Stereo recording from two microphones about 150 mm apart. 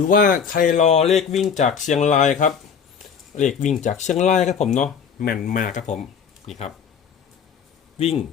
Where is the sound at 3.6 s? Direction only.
55° left (ahead or behind).